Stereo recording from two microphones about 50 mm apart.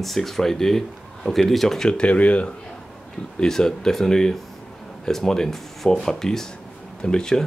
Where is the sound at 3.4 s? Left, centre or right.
Centre.